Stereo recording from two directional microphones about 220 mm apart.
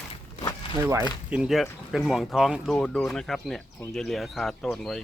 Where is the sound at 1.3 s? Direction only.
Centre (ahead or behind).